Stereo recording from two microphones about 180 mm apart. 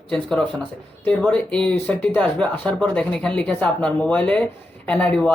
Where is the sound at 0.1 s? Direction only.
5° left (ahead or behind).